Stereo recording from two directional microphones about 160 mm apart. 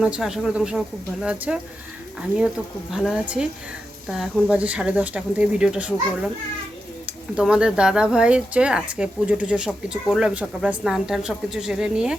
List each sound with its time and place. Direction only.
0.0 s speech: 5° right (ahead or behind)
2.9 s speech: centre (ahead or behind)
7.3 s speech: 5° right (ahead or behind)